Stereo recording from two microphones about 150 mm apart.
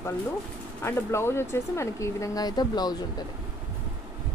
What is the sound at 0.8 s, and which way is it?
Speech, 15° left (ahead or behind).